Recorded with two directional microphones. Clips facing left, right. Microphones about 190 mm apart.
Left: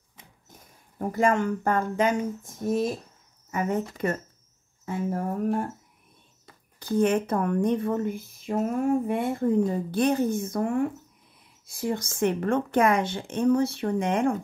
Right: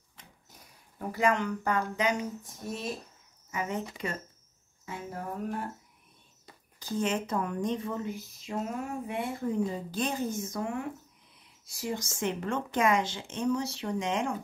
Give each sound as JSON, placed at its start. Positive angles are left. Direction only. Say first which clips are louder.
{"t": 0.5, "sound": "speech", "louder": "left 4 dB", "side_deg": 50}
{"t": 4.8, "sound": "speech", "louder": "left 10 dB", "side_deg": 50}
{"t": 6.8, "sound": "speech", "louder": "left 8 dB", "side_deg": 60}